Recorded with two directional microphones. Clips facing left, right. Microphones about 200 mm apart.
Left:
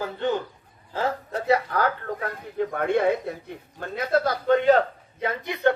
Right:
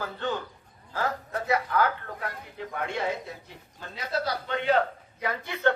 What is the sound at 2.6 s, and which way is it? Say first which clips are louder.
A man's voice: left 9 dB; 55° left (ahead or behind).